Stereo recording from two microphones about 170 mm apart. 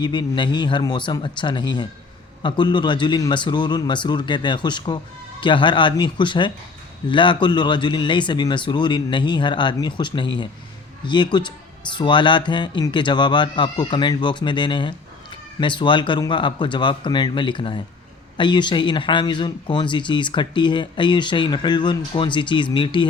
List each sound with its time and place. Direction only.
0.0 s speech: 25° left (ahead or behind)